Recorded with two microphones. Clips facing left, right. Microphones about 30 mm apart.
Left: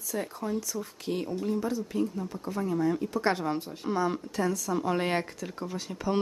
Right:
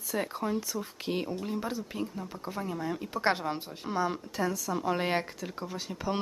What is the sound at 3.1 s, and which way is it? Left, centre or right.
Speech, right.